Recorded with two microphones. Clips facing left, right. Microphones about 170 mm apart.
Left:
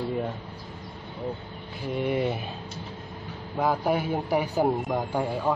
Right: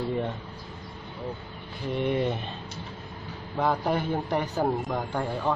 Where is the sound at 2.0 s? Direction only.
5° left (ahead or behind).